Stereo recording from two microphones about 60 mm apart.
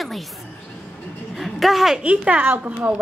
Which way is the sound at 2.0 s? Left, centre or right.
Right.